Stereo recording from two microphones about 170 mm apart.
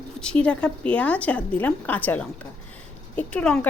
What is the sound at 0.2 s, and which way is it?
A woman's voice, 5° left (ahead or behind).